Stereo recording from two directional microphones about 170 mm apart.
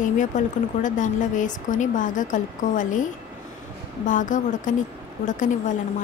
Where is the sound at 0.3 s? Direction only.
45° left (ahead or behind).